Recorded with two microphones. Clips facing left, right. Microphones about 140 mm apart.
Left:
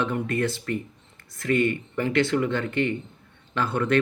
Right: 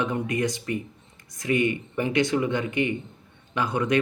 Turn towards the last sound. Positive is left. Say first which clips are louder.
# left 1 dB
turn(degrees=-15)  # may be behind; listen again after turning